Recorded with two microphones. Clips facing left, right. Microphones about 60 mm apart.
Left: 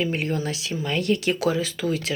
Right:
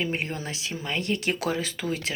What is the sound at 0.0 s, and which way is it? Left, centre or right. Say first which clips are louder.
Speech: left 4 dB; right.